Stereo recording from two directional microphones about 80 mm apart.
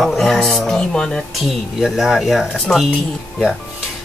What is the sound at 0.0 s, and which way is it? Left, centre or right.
Speech, centre.